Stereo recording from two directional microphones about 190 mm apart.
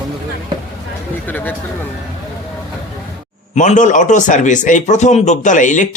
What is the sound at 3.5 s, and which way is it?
A man's voice, 40° left (ahead or behind).